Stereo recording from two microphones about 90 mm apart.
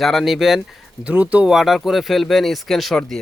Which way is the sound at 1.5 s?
Centre (ahead or behind).